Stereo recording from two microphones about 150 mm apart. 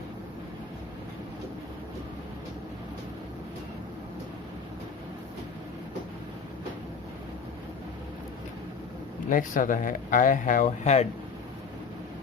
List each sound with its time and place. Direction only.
9.3 s speech: 60° left (ahead or behind)